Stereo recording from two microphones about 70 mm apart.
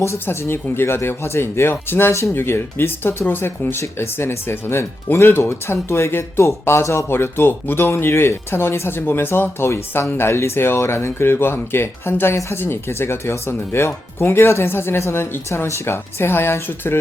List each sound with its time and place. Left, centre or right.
0.0 s speech: left